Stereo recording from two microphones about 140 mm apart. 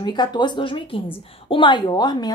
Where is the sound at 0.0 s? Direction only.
30° left (ahead or behind).